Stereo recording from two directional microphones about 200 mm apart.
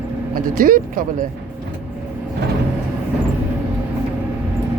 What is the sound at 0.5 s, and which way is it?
Speech, 45° right (ahead or behind).